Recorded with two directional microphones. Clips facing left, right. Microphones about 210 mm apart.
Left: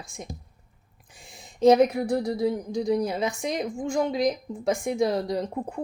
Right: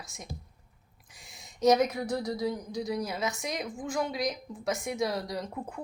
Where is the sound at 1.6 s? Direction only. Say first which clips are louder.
Left 6 dB; 30° left (ahead or behind).